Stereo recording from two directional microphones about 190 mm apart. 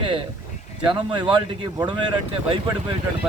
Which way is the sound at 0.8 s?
25° right (ahead or behind).